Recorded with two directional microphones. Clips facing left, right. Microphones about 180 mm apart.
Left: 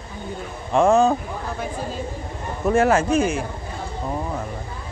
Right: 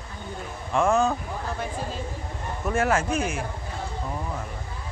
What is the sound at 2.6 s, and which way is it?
Speech, 30° left (ahead or behind).